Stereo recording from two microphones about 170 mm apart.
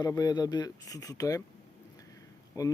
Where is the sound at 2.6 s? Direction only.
15° left (ahead or behind).